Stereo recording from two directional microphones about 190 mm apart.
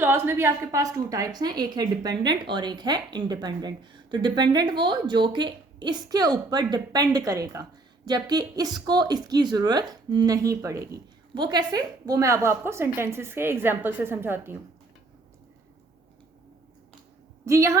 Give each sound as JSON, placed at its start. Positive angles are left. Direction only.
{"t": 0.0, "sound": "a woman's voice", "side_deg": -15}
{"t": 17.4, "sound": "a woman's voice", "side_deg": -15}